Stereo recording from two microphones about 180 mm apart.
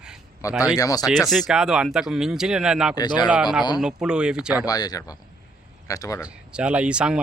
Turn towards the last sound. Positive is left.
turn(degrees=-5)  # may be behind; listen again after turning